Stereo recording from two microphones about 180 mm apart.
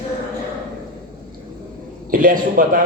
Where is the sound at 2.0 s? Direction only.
50° right (ahead or behind).